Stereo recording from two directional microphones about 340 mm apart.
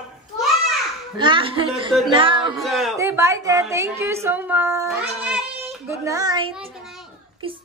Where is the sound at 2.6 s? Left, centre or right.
Centre.